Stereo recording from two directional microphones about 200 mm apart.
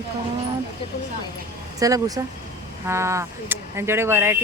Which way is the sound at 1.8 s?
15° right (ahead or behind).